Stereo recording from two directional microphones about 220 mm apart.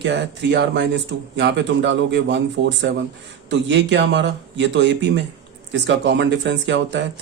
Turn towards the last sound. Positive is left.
turn(degrees=-55)  # may be behind; listen again after turning